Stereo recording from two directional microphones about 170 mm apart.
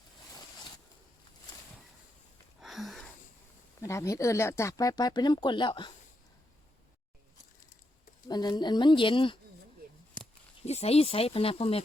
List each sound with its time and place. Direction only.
2.6 s a sound: centre (ahead or behind)
3.8 s speech: 15° left (ahead or behind)
8.3 s speech: 25° left (ahead or behind)
10.7 s speech: 40° left (ahead or behind)